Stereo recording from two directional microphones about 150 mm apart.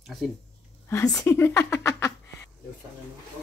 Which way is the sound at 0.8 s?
20° left (ahead or behind).